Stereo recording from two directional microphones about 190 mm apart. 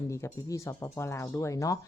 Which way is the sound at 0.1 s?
15° left (ahead or behind).